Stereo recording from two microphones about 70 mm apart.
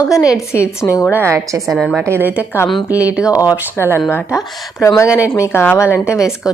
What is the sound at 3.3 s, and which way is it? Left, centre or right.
Speech, left.